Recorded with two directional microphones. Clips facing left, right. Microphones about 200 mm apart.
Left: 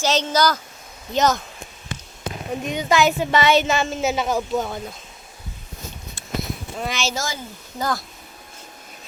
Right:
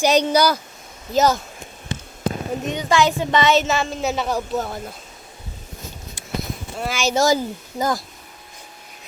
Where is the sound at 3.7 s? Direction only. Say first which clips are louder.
Left 1 dB; centre (ahead or behind).